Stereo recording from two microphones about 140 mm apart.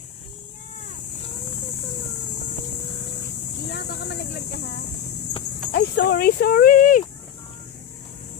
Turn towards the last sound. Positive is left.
turn(degrees=80)